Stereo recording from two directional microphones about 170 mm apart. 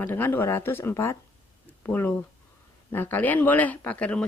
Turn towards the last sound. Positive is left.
turn(degrees=10)  # may be behind; listen again after turning